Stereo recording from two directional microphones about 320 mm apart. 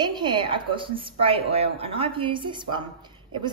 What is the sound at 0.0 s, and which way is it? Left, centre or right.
A woman's voice, centre.